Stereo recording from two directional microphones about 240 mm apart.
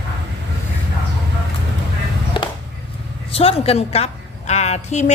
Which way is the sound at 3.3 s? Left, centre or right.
Left.